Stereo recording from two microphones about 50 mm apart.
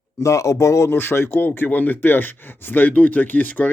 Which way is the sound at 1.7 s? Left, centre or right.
Left.